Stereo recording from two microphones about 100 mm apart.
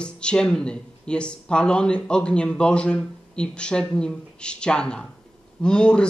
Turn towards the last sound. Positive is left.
turn(degrees=10)  # may be behind; listen again after turning